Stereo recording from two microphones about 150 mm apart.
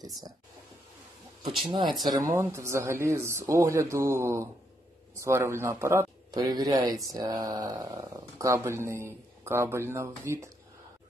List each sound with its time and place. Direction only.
1.6 s speech: 30° right (ahead or behind)